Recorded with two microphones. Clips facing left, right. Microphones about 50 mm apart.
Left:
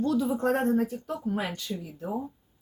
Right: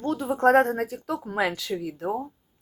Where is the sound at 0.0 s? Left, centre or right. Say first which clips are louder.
Left 2 dB; right.